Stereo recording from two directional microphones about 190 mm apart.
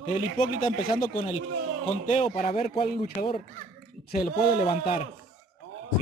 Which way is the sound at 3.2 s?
50° left (ahead or behind).